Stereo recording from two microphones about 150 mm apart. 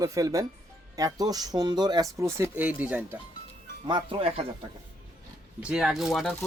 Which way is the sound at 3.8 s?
30° right (ahead or behind).